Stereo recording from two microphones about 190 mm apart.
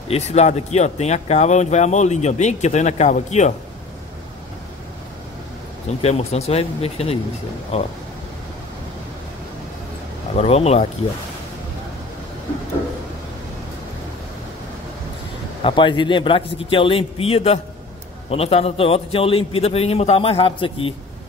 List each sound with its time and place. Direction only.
0.1 s speech: 35° left (ahead or behind)
6.0 s speech: 35° left (ahead or behind)
10.3 s speech: 30° left (ahead or behind)
15.6 s a man's voice: 25° left (ahead or behind)